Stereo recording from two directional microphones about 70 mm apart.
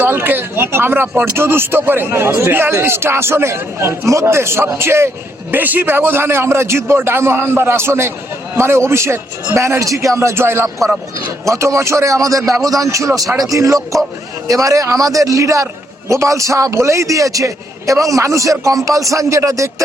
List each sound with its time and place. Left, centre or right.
0.0 s speech: right
5.5 s a man's voice: right
12.4 s a man's voice: centre
12.6 s a man's voice: right